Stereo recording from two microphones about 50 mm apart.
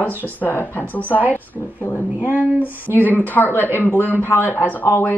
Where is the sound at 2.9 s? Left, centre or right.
Left.